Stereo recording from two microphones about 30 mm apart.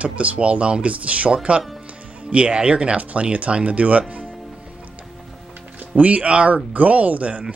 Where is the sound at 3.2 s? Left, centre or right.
Right.